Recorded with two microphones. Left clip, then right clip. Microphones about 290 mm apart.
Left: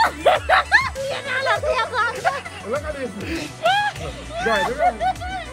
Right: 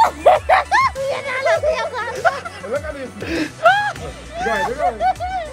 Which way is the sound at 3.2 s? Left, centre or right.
Right.